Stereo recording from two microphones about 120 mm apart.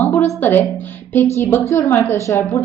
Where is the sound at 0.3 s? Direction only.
15° left (ahead or behind).